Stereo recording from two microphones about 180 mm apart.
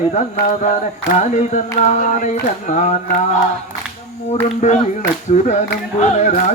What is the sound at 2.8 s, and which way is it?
Carnatic music, 40° left (ahead or behind).